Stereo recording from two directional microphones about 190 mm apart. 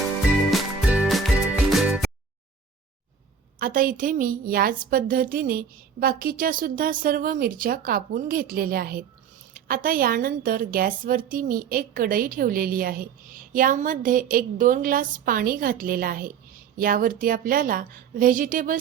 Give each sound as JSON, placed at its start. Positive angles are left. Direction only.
{"t": 0.5, "sound": "music", "side_deg": -5}
{"t": 3.6, "sound": "a woman's voice", "side_deg": -50}